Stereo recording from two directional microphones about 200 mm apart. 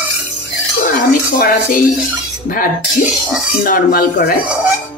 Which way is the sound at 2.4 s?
45° left (ahead or behind).